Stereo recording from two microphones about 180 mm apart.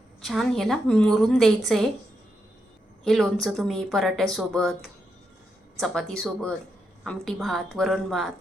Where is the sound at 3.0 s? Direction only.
Centre (ahead or behind).